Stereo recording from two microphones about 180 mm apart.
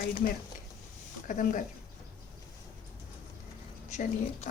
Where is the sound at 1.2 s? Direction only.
45° left (ahead or behind).